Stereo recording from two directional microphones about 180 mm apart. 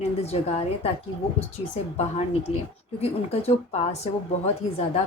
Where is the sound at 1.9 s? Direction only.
35° left (ahead or behind).